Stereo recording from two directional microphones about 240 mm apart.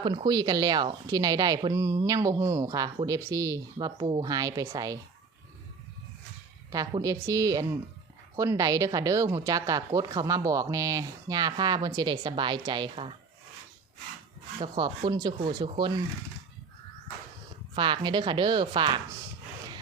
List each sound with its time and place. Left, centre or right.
0.0 s speech: centre
6.7 s speech: centre
14.6 s speech: centre
17.7 s speech: centre